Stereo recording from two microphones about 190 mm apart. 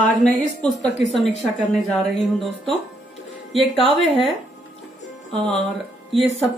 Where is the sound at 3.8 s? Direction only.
30° right (ahead or behind).